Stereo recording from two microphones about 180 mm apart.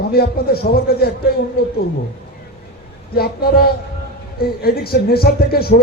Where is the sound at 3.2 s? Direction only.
60° left (ahead or behind).